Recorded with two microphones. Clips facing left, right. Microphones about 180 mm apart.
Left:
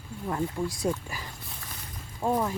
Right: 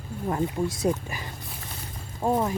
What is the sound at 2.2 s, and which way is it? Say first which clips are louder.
Speech: right 2 dB; 20° right (ahead or behind).